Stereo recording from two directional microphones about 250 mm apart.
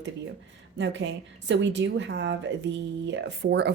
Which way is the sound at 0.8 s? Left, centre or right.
Right.